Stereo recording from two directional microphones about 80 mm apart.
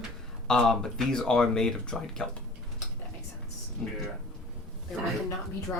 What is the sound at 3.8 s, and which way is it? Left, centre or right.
Speech, centre.